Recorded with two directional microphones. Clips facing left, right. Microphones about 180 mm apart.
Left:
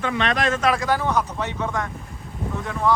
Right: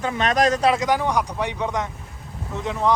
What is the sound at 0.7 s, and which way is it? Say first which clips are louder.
Speech: right 1 dB; 20° right (ahead or behind).